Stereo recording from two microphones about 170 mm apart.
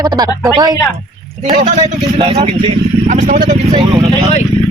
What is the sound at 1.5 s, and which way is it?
Speech, 45° right (ahead or behind).